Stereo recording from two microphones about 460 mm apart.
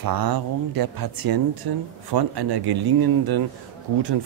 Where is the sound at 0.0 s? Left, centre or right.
Right.